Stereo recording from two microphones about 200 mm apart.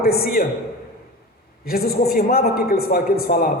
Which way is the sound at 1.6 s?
50° left (ahead or behind).